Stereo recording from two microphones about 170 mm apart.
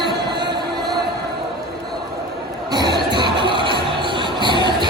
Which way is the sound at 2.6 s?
25° right (ahead or behind).